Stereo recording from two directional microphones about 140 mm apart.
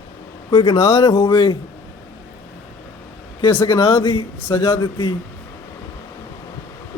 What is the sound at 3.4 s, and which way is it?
Speech, 20° left (ahead or behind).